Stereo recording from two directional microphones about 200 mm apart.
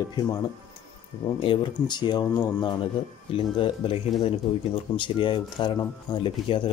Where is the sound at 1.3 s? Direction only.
25° left (ahead or behind).